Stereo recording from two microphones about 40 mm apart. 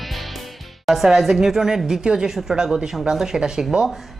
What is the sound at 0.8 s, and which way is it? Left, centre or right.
Speech, centre.